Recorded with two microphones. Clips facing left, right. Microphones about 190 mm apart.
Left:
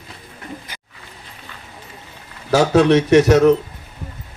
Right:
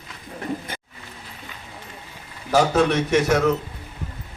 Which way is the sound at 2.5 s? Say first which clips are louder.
Left 5 dB; 75° left (ahead or behind).